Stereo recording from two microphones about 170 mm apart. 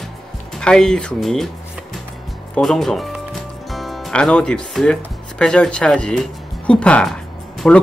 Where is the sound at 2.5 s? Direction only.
Centre (ahead or behind).